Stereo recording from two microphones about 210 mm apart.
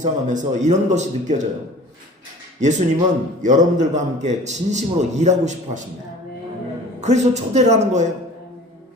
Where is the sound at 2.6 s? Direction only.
35° right (ahead or behind).